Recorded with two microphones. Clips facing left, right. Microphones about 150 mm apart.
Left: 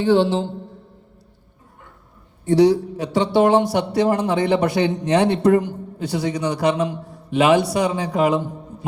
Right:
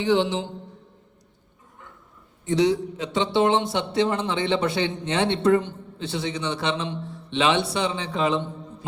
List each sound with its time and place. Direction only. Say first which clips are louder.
0.0 s a man's voice: left 5 dB; 20° right (ahead or behind)
2.4 s a man's voice: left 6 dB; 20° right (ahead or behind)